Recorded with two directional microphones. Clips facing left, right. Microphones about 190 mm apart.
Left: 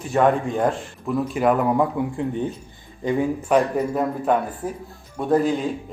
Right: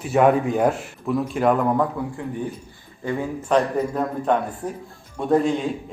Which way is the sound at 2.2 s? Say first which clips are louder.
Left 4 dB; 25° left (ahead or behind).